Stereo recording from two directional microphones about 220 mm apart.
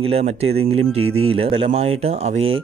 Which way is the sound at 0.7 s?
75° right (ahead or behind).